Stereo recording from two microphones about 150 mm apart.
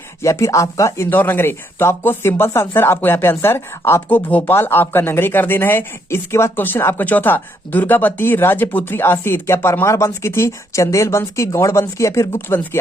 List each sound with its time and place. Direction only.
0.2 s speech: 20° left (ahead or behind)